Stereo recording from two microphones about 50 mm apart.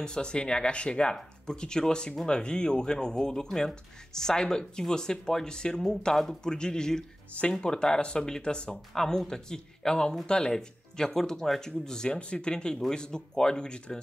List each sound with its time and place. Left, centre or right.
0.0 s speech: centre